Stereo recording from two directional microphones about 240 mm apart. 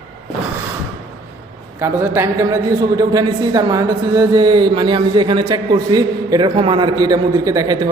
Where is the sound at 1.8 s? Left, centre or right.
Centre.